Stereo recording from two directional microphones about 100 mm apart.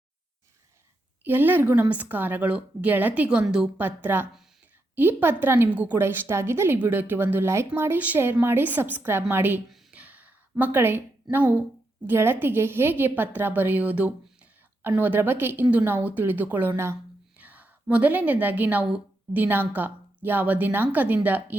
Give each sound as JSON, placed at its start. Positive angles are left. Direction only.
{"t": 1.2, "sound": "a woman's voice", "side_deg": -20}
{"t": 9.9, "sound": "a sound", "side_deg": -15}
{"t": 12.0, "sound": "a woman's voice", "side_deg": -20}